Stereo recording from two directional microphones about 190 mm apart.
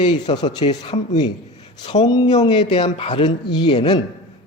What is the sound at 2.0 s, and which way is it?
A man's voice, 20° left (ahead or behind).